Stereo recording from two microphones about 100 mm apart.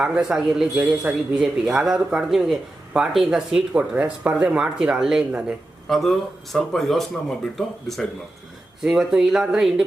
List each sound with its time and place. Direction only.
0.0 s a man's voice: 10° right (ahead or behind)
5.9 s a man's voice: 5° left (ahead or behind)